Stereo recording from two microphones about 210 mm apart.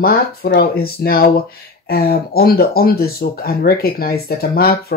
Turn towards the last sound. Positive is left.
turn(degrees=45)  # may be behind; listen again after turning